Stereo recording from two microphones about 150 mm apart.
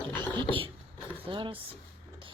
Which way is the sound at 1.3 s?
35° right (ahead or behind).